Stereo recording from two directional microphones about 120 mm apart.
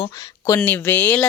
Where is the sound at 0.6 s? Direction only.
15° left (ahead or behind).